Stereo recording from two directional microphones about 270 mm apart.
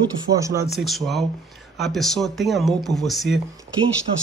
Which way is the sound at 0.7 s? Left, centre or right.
Centre.